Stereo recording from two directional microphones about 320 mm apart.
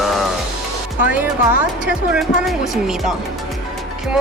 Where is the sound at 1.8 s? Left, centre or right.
Centre.